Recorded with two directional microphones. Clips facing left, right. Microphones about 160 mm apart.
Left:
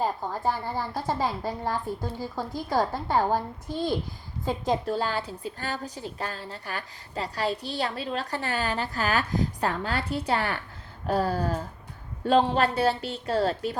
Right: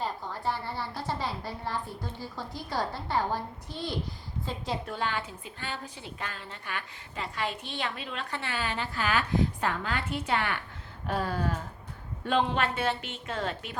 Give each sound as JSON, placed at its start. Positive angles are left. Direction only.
{"t": 0.0, "sound": "a woman's voice", "side_deg": 45}